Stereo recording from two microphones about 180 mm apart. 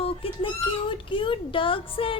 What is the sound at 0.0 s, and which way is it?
A child's voice, 30° left (ahead or behind).